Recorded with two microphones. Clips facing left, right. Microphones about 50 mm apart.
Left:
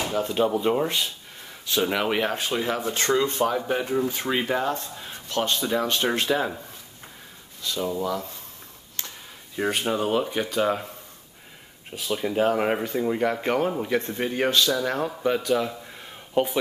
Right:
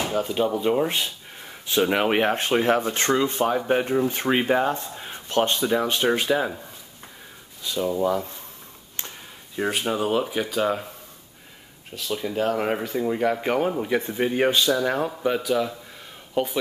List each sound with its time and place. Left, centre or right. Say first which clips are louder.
0.1 s speech: left 2 dB; centre
1.7 s speech: right 3 dB; centre
2.0 s speech: right 3 dB; right
3.2 s speech: right 1 dB; centre
3.6 s speech: right 3 dB; right
5.6 s speech: right 2 dB; centre
7.6 s speech: right 2 dB; centre
8.0 s speech: right 5 dB; right
9.6 s speech: even; centre
11.9 s speech: left 1 dB; centre